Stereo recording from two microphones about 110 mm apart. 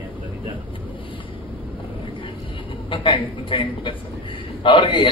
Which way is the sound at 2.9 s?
50° left (ahead or behind).